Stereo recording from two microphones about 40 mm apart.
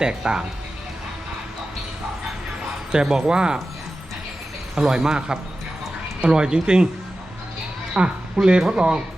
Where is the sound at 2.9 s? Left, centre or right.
Centre.